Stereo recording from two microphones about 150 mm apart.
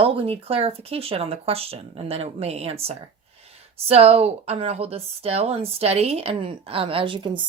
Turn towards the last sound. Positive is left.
turn(degrees=-35)  # may be behind; listen again after turning